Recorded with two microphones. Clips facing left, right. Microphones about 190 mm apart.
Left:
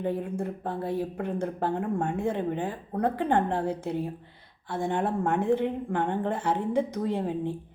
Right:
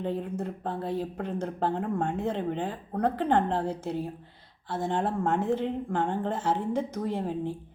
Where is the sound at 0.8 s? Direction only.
10° left (ahead or behind).